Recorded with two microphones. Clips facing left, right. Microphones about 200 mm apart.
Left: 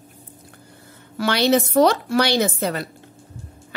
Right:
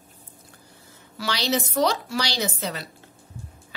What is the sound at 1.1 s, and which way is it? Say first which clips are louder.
A woman's voice: left 8 dB; 55° left (ahead or behind).